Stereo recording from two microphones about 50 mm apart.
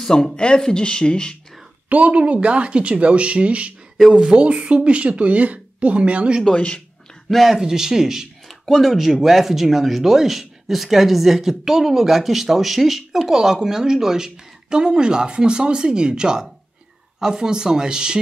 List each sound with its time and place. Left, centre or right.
0.0 s speech: centre
1.9 s speech: right
6.5 s speech: left
7.2 s speech: centre